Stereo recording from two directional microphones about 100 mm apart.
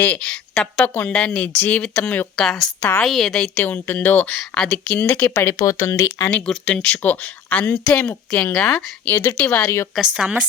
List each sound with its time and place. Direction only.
0.0 s a woman's voice: 10° left (ahead or behind)
3.5 s speech: 20° left (ahead or behind)
6.3 s speech: 10° left (ahead or behind)
9.0 s speech: 20° left (ahead or behind)
9.9 s speech: 5° right (ahead or behind)